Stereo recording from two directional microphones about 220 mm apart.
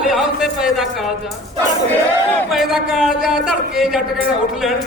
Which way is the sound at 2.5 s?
Centre (ahead or behind).